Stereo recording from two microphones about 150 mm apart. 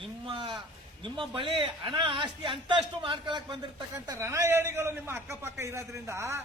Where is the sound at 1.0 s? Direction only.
30° right (ahead or behind).